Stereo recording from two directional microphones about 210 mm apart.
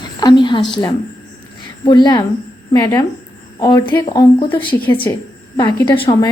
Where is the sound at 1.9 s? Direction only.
20° left (ahead or behind).